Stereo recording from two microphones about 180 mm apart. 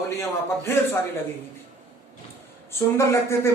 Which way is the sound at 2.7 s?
15° left (ahead or behind).